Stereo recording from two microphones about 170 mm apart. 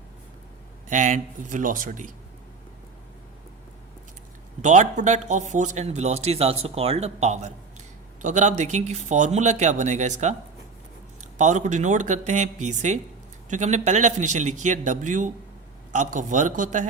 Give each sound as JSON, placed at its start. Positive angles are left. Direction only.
{"t": 0.9, "sound": "speech", "side_deg": -50}
{"t": 4.6, "sound": "speech", "side_deg": -45}
{"t": 11.3, "sound": "speech", "side_deg": -45}